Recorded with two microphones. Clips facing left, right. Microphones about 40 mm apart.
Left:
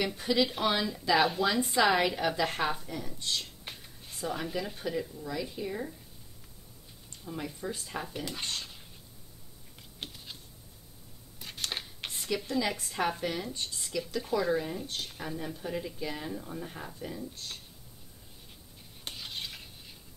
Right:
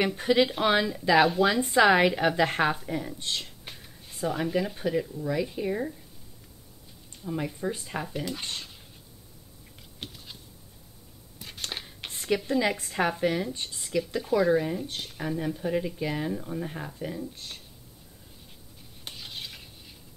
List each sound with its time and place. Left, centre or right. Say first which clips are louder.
0.0 s speech: right 5 dB; right
0.5 s speech: right 5 dB; centre
1.2 s speech: right 5 dB; centre
1.8 s a woman's voice: right 6 dB; right
3.6 s a sound: right 1 dB; centre
4.3 s speech: right 6 dB; centre
7.2 s speech: right 6 dB; centre
8.0 s speech: right 4 dB; centre
9.9 s a sound: right 1 dB; centre
11.3 s a sound: even; centre
12.4 s a woman's voice: right 5 dB; right
19.0 s stir: even; centre